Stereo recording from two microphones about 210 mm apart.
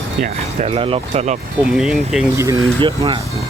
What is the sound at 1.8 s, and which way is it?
Speech, 5° right (ahead or behind).